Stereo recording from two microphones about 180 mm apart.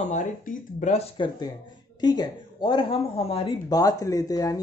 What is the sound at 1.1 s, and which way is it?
Speech, 25° left (ahead or behind).